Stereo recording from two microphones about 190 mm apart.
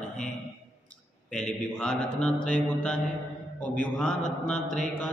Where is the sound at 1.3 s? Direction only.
5° left (ahead or behind).